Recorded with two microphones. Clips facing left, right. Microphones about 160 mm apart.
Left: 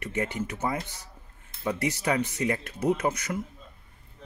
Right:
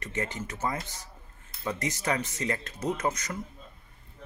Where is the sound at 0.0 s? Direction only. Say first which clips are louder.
Left 4 dB; 10° left (ahead or behind).